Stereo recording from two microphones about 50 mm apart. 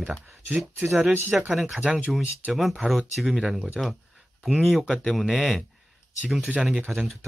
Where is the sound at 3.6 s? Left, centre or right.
Centre.